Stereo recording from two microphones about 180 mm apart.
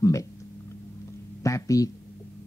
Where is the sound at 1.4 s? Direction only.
20° left (ahead or behind).